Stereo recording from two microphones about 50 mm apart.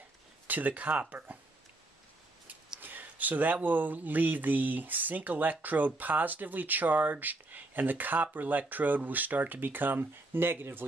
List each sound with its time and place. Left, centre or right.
0.5 s speech: right
2.8 s a sound: right
3.6 s speech: right